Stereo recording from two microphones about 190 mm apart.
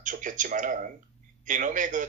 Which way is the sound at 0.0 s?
45° right (ahead or behind).